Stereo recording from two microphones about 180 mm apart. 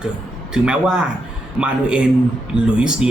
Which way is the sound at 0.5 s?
5° right (ahead or behind).